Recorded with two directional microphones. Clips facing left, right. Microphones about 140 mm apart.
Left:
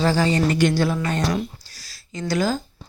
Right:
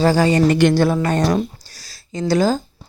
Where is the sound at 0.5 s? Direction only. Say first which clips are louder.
Right 5 dB; 60° right (ahead or behind).